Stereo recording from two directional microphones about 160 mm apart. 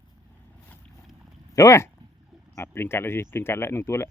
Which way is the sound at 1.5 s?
20° left (ahead or behind).